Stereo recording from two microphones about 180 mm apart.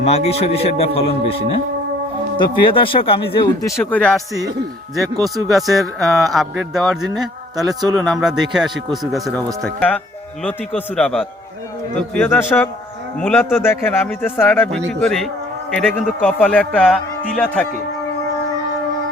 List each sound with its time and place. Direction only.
0.0 s a man's voice: 35° left (ahead or behind)
2.4 s speech: 30° left (ahead or behind); by 4.1 s 10° left (ahead or behind)
5.2 s speech: centre (ahead or behind)
7.7 s speech: 20° right (ahead or behind)
7.9 s speech: centre (ahead or behind)